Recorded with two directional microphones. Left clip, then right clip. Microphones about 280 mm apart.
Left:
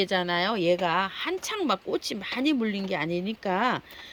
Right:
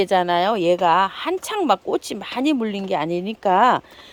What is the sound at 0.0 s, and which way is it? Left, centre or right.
Speech, centre.